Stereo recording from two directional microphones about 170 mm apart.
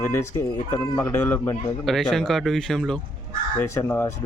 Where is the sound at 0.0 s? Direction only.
15° left (ahead or behind).